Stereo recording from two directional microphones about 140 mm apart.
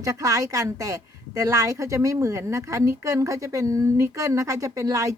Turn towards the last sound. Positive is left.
turn(degrees=-25)  # may be behind; listen again after turning